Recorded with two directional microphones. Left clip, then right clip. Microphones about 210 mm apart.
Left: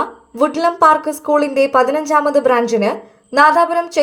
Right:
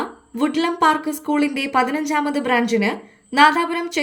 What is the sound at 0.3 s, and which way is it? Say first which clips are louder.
A woman's voice: left 6 dB; 10° left (ahead or behind).